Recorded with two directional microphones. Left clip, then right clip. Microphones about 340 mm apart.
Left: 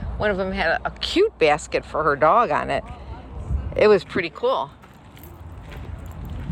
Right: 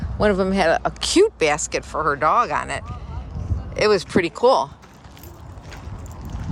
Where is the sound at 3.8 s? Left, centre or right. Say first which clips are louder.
Left 1 dB; centre.